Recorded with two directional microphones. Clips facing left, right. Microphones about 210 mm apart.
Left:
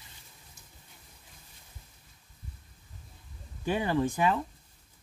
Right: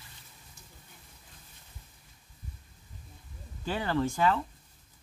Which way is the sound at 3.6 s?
15° left (ahead or behind).